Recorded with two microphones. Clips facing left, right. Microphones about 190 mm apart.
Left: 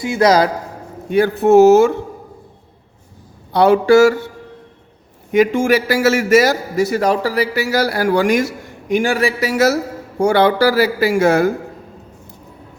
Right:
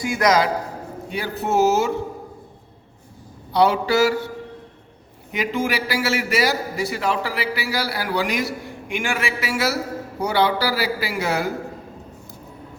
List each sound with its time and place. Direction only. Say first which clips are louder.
0.0 s a man's voice: left 5 dB; 25° left (ahead or behind)
1.1 s a man's voice: left 12 dB; 50° left (ahead or behind)
3.5 s a man's voice: left 8 dB; 50° left (ahead or behind)
5.3 s a man's voice: left 10 dB; 50° left (ahead or behind)
8.9 s a man's voice: left 9 dB; 35° left (ahead or behind)